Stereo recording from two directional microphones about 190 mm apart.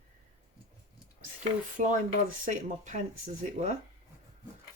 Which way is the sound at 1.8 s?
40° right (ahead or behind).